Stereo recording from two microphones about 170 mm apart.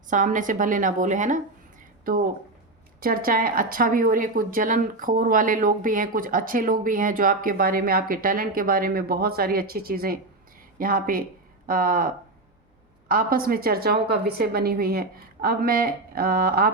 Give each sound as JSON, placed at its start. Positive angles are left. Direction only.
{"t": 0.1, "sound": "speech", "side_deg": -50}